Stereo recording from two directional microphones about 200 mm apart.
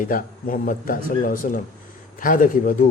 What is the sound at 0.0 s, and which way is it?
A man's voice, 45° left (ahead or behind).